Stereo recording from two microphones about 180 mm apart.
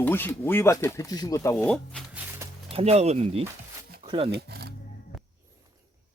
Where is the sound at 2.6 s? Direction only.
35° right (ahead or behind).